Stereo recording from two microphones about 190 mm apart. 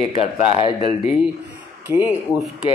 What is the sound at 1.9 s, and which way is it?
Speech, 10° right (ahead or behind).